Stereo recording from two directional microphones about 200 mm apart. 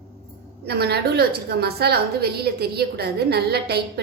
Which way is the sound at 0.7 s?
55° right (ahead or behind).